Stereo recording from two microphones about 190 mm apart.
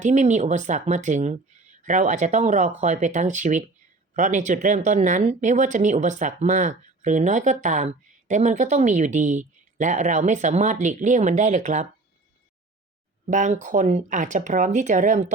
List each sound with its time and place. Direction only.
0.0 s speech: 40° right (ahead or behind)
13.2 s speech: 40° right (ahead or behind)